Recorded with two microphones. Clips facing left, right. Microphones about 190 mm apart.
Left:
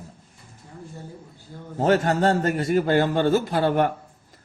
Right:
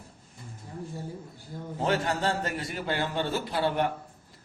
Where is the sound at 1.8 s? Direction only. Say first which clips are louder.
Left 8 dB; 45° left (ahead or behind).